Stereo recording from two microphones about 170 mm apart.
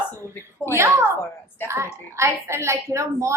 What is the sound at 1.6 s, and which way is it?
Speech, 15° right (ahead or behind).